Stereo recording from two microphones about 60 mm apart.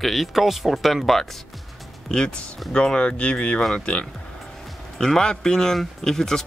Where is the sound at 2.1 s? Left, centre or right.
Centre.